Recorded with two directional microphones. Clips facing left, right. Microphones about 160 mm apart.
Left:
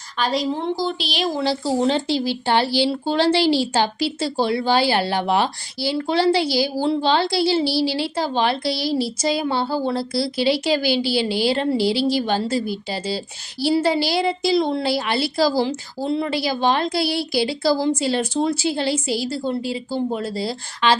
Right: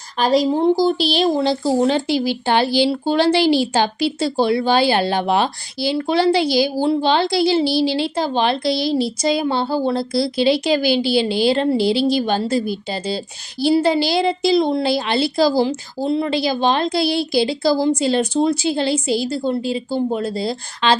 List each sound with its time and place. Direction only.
0.2 s a woman's voice: 40° right (ahead or behind)
1.1 s a woman's voice: 25° right (ahead or behind)